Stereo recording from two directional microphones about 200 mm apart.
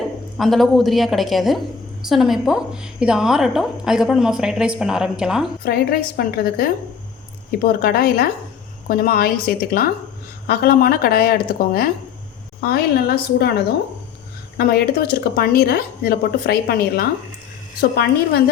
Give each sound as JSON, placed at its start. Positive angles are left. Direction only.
{"t": 0.3, "sound": "a woman's voice", "side_deg": 0}
{"t": 5.6, "sound": "a woman's voice", "side_deg": 50}